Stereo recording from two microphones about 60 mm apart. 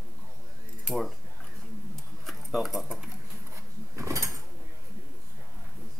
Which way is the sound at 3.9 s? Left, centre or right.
Right.